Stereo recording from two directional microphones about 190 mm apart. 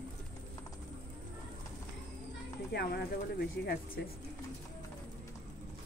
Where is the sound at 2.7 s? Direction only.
55° left (ahead or behind).